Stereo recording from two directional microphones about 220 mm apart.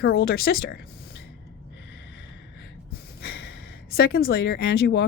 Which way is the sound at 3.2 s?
45° left (ahead or behind).